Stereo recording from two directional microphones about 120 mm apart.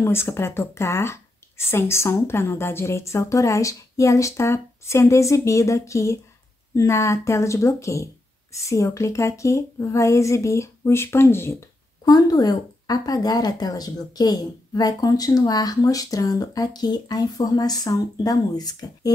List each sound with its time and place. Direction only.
0.0 s speech: 20° left (ahead or behind)
12.0 s a woman's voice: 35° left (ahead or behind)